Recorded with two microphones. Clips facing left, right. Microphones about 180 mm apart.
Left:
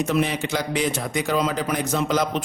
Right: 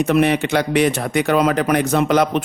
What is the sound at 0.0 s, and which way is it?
A man's voice, 65° right (ahead or behind).